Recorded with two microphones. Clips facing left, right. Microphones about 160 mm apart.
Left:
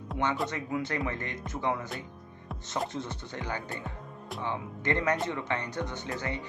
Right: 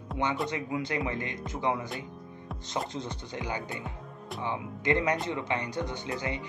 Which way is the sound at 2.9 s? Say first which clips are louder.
Even; 15° right (ahead or behind).